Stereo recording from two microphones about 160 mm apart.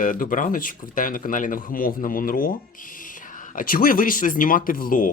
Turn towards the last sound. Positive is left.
turn(degrees=60)  # may be behind; listen again after turning